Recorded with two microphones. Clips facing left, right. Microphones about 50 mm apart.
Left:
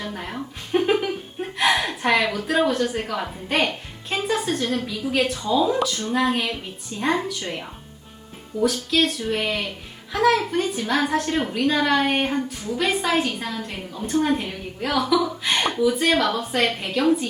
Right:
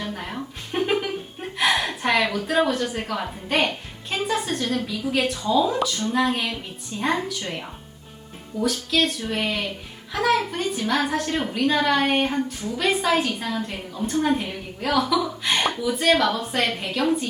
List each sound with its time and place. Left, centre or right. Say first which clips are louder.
0.0 s a sound: even; centre
4.1 s music: left 1 dB; centre
4.7 s a woman's voice: even; centre
8.6 s a woman's voice: left 2 dB; centre